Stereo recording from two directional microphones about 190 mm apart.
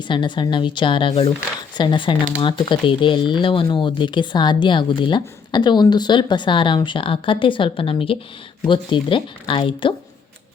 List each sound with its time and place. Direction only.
0.0 s speech: 25° left (ahead or behind)